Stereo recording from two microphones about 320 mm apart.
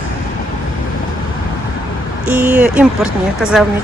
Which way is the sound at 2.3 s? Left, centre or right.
Centre.